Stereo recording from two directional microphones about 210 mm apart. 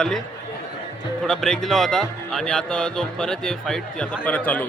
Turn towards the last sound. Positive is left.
turn(degrees=5)  # may be behind; listen again after turning